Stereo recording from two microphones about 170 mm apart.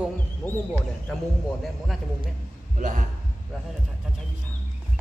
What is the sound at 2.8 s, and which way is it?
Speech, 50° right (ahead or behind).